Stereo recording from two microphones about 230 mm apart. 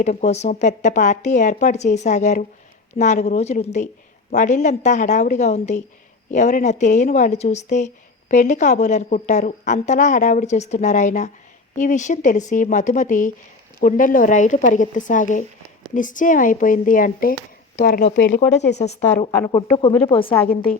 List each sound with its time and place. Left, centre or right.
0.0 s a woman's voice: left
18.8 s a woman's voice: left